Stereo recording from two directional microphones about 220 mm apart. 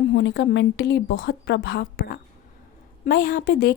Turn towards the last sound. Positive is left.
turn(degrees=45)  # may be behind; listen again after turning